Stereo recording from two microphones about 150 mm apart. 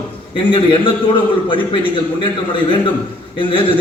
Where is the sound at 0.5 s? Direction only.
35° left (ahead or behind).